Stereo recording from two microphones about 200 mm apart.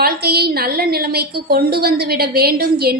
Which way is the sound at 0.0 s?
50° right (ahead or behind).